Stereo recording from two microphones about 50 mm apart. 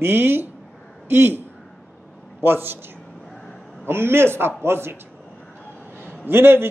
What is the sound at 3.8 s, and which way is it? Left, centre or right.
Speech, right.